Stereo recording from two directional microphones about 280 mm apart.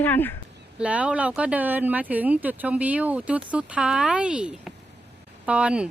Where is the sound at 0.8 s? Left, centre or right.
Centre.